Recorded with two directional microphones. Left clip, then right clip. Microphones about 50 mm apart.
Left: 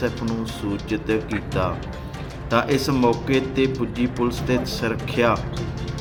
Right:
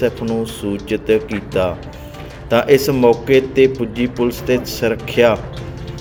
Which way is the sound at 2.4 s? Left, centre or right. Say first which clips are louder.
Right 8 dB; right.